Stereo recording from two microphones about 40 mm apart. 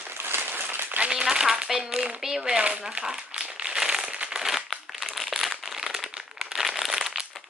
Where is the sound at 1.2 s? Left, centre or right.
Centre.